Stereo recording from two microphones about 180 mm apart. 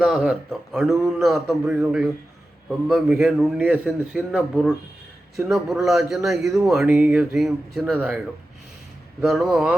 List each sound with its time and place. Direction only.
0.0 s speech: 5° right (ahead or behind)
0.9 s a man's voice: 15° right (ahead or behind)
1.2 s a man's voice: centre (ahead or behind)
3.1 s a man's voice: 10° right (ahead or behind)
6.3 s a man's voice: 15° right (ahead or behind); by 7.9 s centre (ahead or behind)
7.9 s a man's voice: 10° right (ahead or behind)
9.2 s speech: centre (ahead or behind)